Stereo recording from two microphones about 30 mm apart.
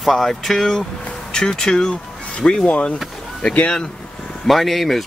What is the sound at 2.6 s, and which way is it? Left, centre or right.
Speech, left.